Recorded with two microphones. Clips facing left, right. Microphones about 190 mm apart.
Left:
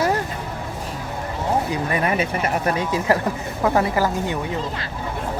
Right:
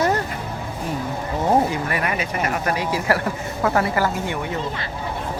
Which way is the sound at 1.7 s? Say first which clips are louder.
Left 2 dB; 25° left (ahead or behind).